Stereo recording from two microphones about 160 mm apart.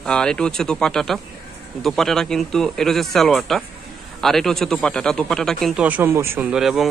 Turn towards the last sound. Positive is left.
turn(degrees=0)  # may be behind; listen again after turning